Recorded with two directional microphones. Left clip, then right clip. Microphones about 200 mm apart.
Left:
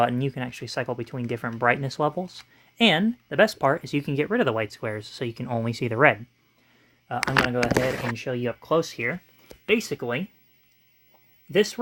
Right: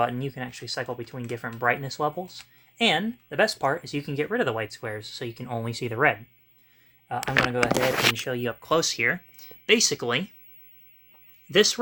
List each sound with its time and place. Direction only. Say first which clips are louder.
0.0 s speech: left 3 dB; 45° left (ahead or behind)
8.1 s speech: even; 25° left (ahead or behind); by 10.2 s 5° left (ahead or behind)
11.5 s speech: right 2 dB; 5° left (ahead or behind)